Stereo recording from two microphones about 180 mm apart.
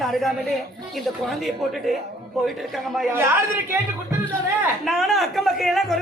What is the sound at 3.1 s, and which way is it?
Speech, 15° right (ahead or behind).